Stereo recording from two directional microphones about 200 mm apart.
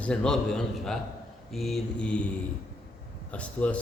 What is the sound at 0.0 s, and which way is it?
A man's voice, 5° left (ahead or behind).